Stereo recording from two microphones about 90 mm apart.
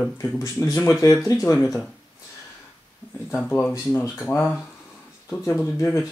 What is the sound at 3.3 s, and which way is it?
Speech, 20° left (ahead or behind).